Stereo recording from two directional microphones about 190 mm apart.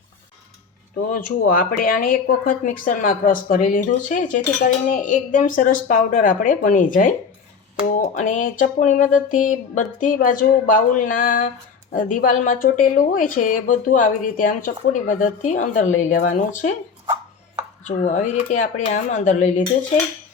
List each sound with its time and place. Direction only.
1.1 s speech: 50° left (ahead or behind)
8.1 s speech: 40° left (ahead or behind)
17.8 s speech: 40° left (ahead or behind)